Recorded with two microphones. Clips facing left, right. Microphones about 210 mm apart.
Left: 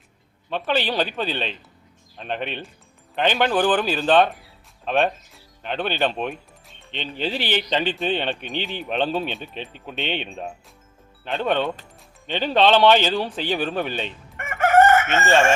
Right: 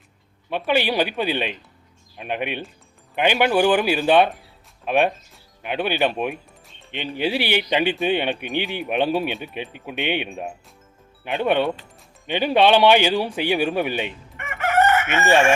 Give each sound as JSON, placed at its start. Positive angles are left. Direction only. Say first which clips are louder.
{"t": 0.5, "sound": "speech", "louder": "right 2 dB", "side_deg": -10}
{"t": 14.3, "sound": "chicken", "louder": "left 4 dB", "side_deg": 45}
{"t": 15.0, "sound": "speech", "louder": "right 1 dB", "side_deg": -15}